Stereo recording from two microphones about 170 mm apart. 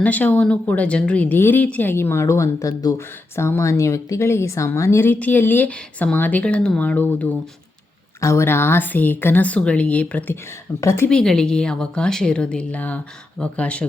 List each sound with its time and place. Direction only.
0.0 s a woman's voice: 10° left (ahead or behind)
11.1 s a woman's voice: 5° left (ahead or behind)